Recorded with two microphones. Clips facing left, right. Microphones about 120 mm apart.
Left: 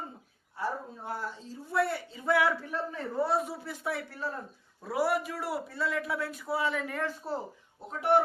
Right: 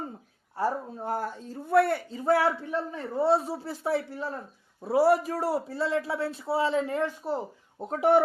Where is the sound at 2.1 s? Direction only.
40° right (ahead or behind); by 7.4 s 20° right (ahead or behind).